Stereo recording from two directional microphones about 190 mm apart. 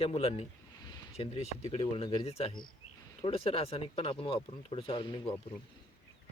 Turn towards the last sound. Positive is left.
turn(degrees=25)  # may be behind; listen again after turning